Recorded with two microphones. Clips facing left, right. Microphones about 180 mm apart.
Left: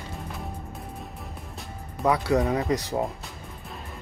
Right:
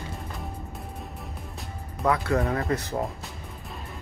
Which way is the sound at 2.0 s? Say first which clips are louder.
Left 2 dB; 10° left (ahead or behind).